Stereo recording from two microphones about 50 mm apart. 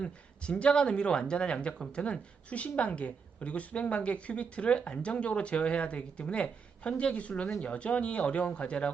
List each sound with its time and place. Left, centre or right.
0.0 s a woman's voice: left